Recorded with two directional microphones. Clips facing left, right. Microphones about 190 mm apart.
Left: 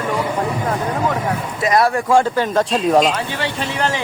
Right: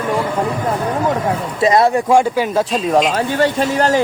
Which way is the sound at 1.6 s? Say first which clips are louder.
Right 3 dB; 25° right (ahead or behind).